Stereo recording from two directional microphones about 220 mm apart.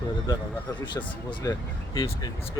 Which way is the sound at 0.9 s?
20° left (ahead or behind).